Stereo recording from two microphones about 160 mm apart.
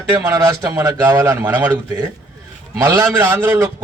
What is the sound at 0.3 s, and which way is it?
A man's voice, 20° right (ahead or behind).